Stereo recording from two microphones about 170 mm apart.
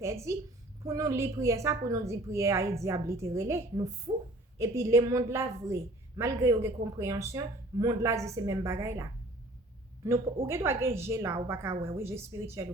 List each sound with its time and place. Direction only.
0.0 s a woman's voice: 15° right (ahead or behind)
10.4 s a woman's voice: 15° right (ahead or behind)